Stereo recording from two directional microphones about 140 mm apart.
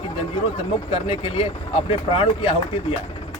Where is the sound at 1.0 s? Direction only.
40° left (ahead or behind).